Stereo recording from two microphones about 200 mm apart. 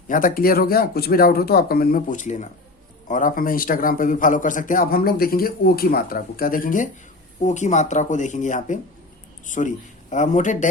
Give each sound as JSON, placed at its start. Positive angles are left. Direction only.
{"t": 0.1, "sound": "a man's voice", "side_deg": 45}